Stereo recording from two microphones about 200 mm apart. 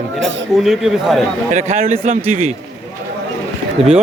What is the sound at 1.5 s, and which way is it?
Speech, 35° right (ahead or behind).